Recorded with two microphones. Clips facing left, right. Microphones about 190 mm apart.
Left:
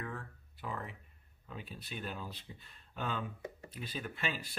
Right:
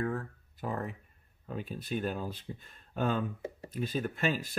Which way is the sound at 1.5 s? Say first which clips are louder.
Right 10 dB; 45° right (ahead or behind).